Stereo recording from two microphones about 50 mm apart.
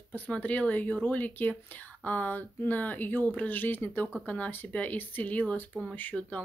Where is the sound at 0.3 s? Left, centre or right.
Left.